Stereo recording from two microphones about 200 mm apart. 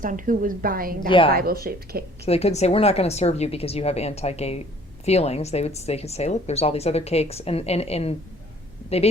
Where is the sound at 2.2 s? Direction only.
30° left (ahead or behind).